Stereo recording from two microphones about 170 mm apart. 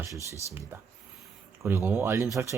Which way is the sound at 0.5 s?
15° right (ahead or behind).